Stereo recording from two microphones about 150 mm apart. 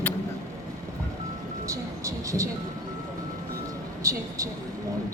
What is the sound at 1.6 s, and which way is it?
Music, 20° right (ahead or behind).